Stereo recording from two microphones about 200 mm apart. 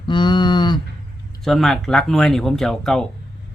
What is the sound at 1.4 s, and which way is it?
Speech, centre (ahead or behind).